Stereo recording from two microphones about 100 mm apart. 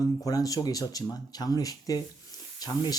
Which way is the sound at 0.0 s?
35° left (ahead or behind).